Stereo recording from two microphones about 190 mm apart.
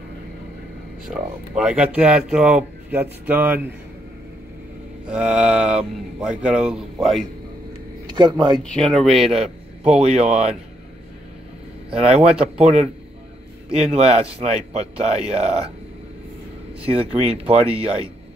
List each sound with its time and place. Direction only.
1.0 s speech: 5° right (ahead or behind)
5.0 s speech: 5° right (ahead or behind)
8.1 s speech: 25° right (ahead or behind)
8.7 s speech: 5° left (ahead or behind)
10.0 s a man's voice: 35° right (ahead or behind)
12.1 s speech: 5° right (ahead or behind)
13.7 s a man's voice: 35° right (ahead or behind)
16.8 s a man's voice: 30° right (ahead or behind)